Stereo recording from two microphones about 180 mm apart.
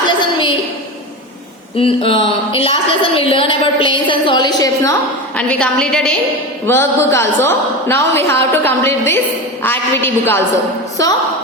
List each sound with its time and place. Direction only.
1.8 s a woman's voice: 30° left (ahead or behind)
5.4 s a woman's voice: 5° left (ahead or behind)
6.7 s a woman's voice: 15° left (ahead or behind)